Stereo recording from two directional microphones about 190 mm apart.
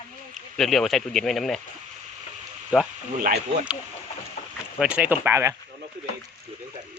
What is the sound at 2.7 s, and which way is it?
Speech, 5° right (ahead or behind).